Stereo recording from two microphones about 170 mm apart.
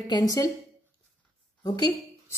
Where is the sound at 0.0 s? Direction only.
25° left (ahead or behind).